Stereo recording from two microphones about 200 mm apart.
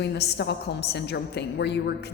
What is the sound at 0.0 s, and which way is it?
A woman's voice, 55° left (ahead or behind).